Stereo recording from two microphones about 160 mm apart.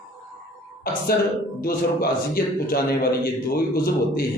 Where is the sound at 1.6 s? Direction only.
70° left (ahead or behind).